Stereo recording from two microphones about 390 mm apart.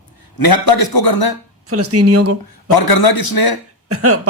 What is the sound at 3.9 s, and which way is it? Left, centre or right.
Speech, right.